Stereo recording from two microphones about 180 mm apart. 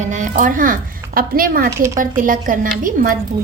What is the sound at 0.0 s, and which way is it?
A woman's voice, 45° right (ahead or behind).